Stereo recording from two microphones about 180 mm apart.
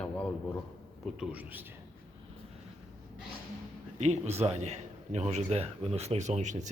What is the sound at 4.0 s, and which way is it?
A man's voice, 40° right (ahead or behind).